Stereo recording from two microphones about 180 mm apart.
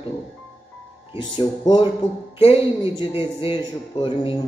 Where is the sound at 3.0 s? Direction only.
30° left (ahead or behind).